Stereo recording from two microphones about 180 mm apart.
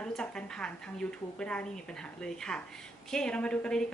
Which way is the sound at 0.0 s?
5° left (ahead or behind).